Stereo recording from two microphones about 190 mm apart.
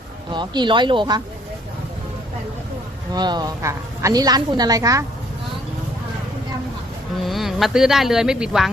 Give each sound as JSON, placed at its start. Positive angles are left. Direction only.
{"t": 0.3, "sound": "a woman's voice", "side_deg": -25}
{"t": 3.1, "sound": "a woman's voice", "side_deg": -20}
{"t": 7.2, "sound": "speech", "side_deg": 0}